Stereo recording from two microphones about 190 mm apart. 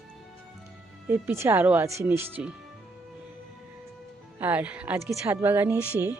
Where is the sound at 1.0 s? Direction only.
10° right (ahead or behind).